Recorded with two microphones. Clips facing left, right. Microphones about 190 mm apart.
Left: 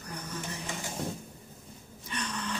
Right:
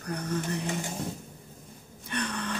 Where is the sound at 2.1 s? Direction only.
55° right (ahead or behind).